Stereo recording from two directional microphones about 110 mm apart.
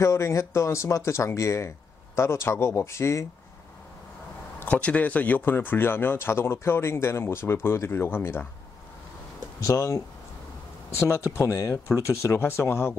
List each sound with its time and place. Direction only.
0.0 s speech: 25° left (ahead or behind)
4.6 s speech: 15° left (ahead or behind)
9.7 s speech: 30° left (ahead or behind)